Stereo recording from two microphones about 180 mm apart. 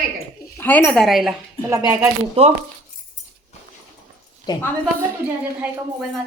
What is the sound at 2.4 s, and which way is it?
Speech, 35° right (ahead or behind).